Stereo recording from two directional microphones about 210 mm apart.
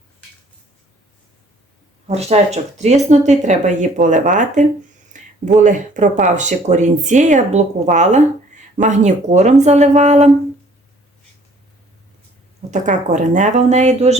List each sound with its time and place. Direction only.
2.0 s speech: 30° right (ahead or behind)
12.7 s speech: 35° right (ahead or behind)